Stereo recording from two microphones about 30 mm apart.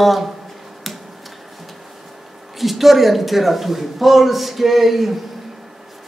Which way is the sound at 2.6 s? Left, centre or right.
Centre.